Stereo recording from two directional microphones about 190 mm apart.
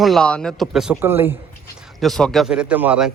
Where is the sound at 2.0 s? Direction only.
Centre (ahead or behind).